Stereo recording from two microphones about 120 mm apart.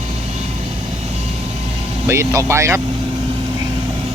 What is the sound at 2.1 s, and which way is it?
Speech, 25° right (ahead or behind).